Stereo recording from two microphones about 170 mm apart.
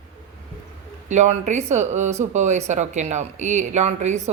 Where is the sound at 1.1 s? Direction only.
45° right (ahead or behind).